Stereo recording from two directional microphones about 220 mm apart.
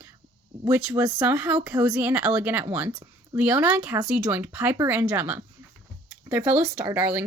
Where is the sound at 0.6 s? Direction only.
5° right (ahead or behind).